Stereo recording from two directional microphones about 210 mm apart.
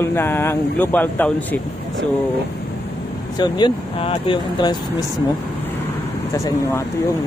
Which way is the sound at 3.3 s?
20° left (ahead or behind).